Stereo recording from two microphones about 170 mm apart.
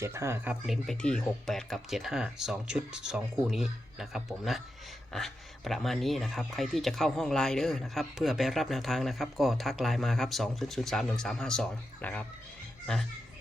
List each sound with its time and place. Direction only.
0.0 s speech: 15° right (ahead or behind)
0.7 s speech: 5° left (ahead or behind)